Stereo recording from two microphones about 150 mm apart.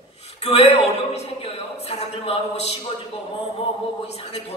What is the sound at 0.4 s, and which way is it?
Speech, 45° left (ahead or behind).